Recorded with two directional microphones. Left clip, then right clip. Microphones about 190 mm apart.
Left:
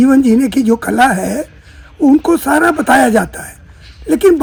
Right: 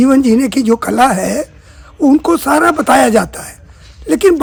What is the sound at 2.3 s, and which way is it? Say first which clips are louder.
Speech: right 1 dB; 30° right (ahead or behind).